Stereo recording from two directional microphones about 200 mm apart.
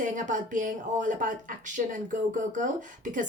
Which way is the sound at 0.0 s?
40° right (ahead or behind).